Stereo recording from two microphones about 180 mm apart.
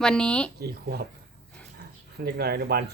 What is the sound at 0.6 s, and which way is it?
Speech, 65° right (ahead or behind).